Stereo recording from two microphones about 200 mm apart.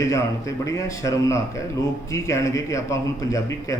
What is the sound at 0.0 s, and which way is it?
A man's voice, 15° left (ahead or behind).